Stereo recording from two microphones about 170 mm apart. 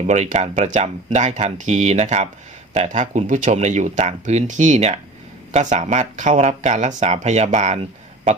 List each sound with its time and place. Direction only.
0.1 s speech: 45° right (ahead or behind)